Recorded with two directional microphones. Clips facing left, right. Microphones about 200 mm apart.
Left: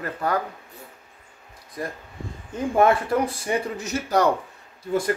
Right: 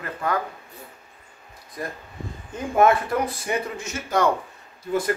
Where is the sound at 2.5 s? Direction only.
30° left (ahead or behind).